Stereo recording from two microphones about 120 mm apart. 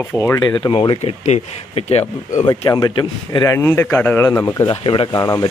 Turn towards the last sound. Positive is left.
turn(degrees=35)  # may be behind; listen again after turning